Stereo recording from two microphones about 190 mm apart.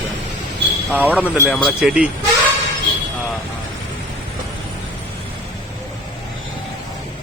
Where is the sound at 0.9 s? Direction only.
5° right (ahead or behind).